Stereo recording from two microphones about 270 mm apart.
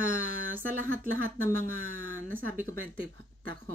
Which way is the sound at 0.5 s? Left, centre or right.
Right.